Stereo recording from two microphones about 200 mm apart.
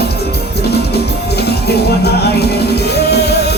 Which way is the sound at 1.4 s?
55° left (ahead or behind).